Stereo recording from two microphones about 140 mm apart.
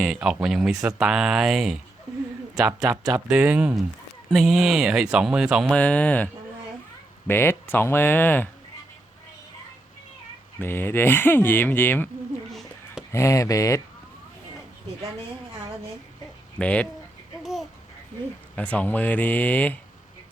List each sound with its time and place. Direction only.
0.0 s speech: 5° right (ahead or behind)
2.8 s speech: 5° right (ahead or behind)
5.7 s speech: 10° left (ahead or behind)
10.6 s speech: 15° left (ahead or behind)
12.5 s a sound: centre (ahead or behind)
13.1 s speech: 20° left (ahead or behind)
16.6 s speech: 10° left (ahead or behind)
17.4 s babbling: centre (ahead or behind)
18.5 s speech: 10° left (ahead or behind)